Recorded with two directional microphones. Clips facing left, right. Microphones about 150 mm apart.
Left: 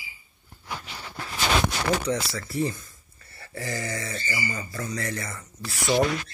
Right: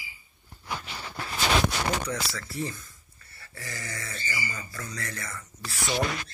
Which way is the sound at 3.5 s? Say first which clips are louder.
Left 8 dB; 40° left (ahead or behind).